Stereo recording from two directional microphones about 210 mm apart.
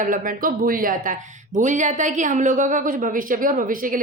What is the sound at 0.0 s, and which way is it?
A woman's voice, 40° right (ahead or behind).